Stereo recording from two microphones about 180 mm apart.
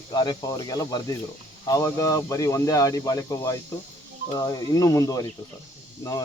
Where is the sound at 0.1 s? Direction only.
25° left (ahead or behind).